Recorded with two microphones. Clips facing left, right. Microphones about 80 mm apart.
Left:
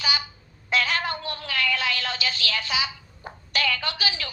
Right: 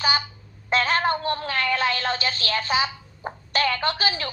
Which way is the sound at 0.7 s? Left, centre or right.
Right.